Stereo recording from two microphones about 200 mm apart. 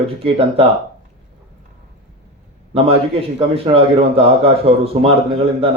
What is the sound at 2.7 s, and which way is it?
A man's voice, 30° right (ahead or behind).